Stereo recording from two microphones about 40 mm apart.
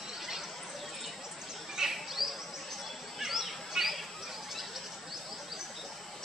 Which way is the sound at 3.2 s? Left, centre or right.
Centre.